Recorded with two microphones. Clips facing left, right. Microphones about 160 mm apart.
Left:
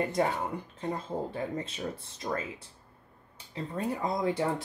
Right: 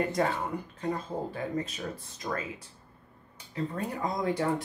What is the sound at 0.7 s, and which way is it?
Speech, 25° left (ahead or behind).